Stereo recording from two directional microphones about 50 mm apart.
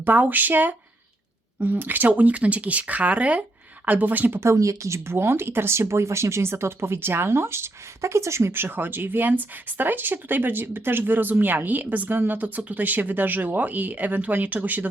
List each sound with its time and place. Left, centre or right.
0.0 s speech: right
4.4 s speech: right
5.1 s speech: right